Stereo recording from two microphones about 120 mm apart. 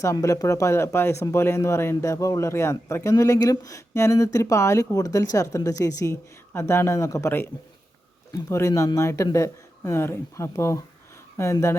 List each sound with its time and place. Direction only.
0.0 s speech: 25° left (ahead or behind)